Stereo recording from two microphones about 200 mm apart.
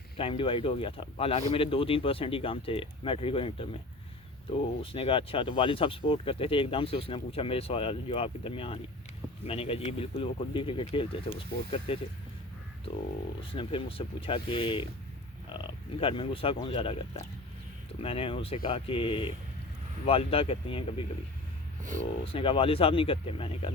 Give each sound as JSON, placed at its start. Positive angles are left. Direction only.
{"t": 0.2, "sound": "speech", "side_deg": 25}
{"t": 4.8, "sound": "speech", "side_deg": 25}
{"t": 13.5, "sound": "speech", "side_deg": 25}
{"t": 22.2, "sound": "speech", "side_deg": 25}